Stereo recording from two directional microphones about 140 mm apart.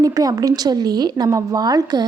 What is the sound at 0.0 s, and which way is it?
A woman's voice, 25° right (ahead or behind).